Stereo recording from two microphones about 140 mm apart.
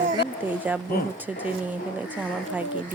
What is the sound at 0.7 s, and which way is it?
Speech, 10° right (ahead or behind).